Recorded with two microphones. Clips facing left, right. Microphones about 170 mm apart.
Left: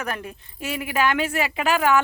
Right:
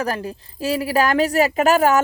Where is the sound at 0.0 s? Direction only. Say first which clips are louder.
Right 6 dB; 35° right (ahead or behind).